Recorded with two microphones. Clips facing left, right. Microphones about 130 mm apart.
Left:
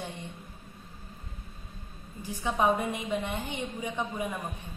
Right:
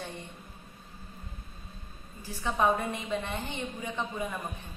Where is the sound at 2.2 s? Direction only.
15° left (ahead or behind).